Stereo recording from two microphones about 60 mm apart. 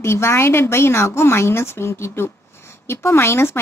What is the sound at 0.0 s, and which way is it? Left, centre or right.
Speech, left.